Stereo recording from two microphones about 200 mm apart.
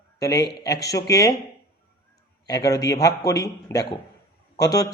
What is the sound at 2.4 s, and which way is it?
Speech, 15° left (ahead or behind).